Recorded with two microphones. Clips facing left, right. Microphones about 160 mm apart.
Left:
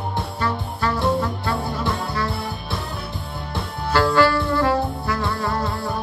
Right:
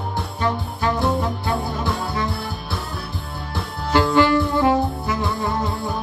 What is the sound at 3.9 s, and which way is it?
Music, 20° right (ahead or behind).